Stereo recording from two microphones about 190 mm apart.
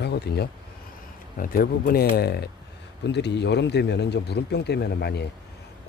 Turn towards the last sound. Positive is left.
turn(degrees=60)  # may be behind; listen again after turning